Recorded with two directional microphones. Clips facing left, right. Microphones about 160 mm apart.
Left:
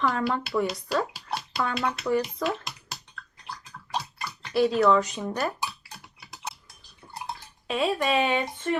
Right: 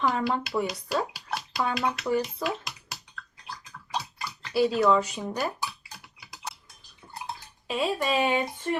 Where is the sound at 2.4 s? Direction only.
30° left (ahead or behind).